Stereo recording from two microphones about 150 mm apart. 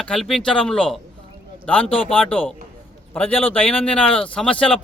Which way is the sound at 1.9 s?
40° left (ahead or behind).